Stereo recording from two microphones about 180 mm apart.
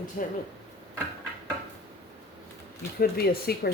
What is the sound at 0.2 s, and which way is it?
Speech, 50° left (ahead or behind).